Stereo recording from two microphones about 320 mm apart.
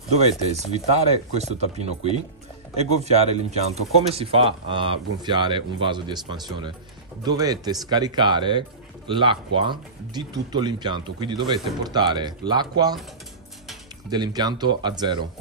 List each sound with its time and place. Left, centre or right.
0.5 s speech: centre
14.1 s speech: centre